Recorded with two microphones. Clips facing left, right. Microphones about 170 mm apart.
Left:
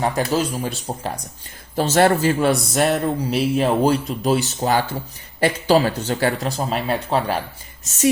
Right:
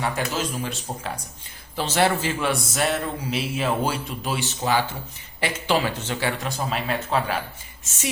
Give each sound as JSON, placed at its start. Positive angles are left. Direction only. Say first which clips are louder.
{"t": 0.0, "sound": "speech", "louder": "left 6 dB", "side_deg": 35}